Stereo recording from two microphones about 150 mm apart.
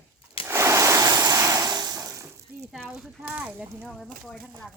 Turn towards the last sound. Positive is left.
turn(degrees=0)  # may be behind; listen again after turning